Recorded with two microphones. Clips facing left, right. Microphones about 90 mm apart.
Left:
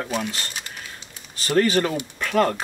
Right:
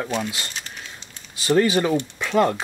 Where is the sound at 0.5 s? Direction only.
10° left (ahead or behind).